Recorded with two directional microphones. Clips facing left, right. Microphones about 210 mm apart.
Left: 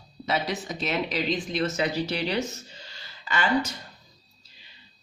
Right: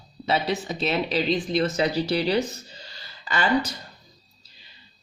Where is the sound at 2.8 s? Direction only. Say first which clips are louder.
Right 2 dB; 35° right (ahead or behind).